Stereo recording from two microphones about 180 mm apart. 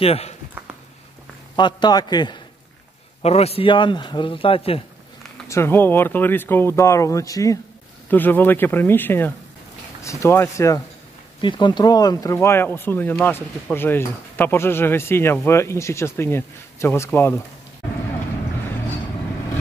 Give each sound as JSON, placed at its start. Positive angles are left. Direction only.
{"t": 0.0, "sound": "speech", "side_deg": 35}
{"t": 1.6, "sound": "a man's voice", "side_deg": 25}
{"t": 3.2, "sound": "a man's voice", "side_deg": 35}
{"t": 5.5, "sound": "speech", "side_deg": 15}